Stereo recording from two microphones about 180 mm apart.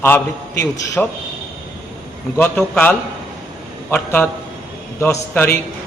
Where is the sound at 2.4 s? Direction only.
10° left (ahead or behind).